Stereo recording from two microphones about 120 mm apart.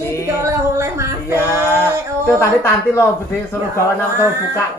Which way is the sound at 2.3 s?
20° left (ahead or behind).